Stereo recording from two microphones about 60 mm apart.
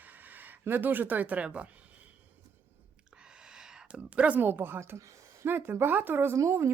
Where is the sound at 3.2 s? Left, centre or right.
Centre.